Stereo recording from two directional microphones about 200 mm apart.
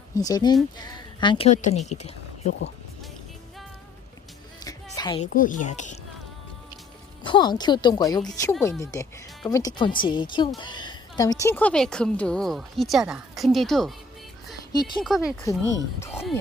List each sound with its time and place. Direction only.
0.2 s speech: 20° left (ahead or behind)
1.5 s speech: 35° left (ahead or behind)
4.6 s music: 20° left (ahead or behind)
5.2 s speech: 40° left (ahead or behind)
7.3 s a woman's voice: 20° left (ahead or behind); by 13.9 s centre (ahead or behind)
14.7 s speech: 20° left (ahead or behind)
15.0 s a woman's voice: centre (ahead or behind)
15.4 s speech: 15° left (ahead or behind)